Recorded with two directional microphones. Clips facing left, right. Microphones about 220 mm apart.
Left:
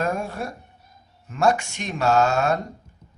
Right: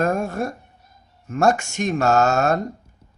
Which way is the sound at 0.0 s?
45° right (ahead or behind).